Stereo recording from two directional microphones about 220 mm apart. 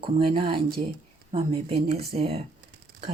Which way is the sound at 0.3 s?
25° right (ahead or behind).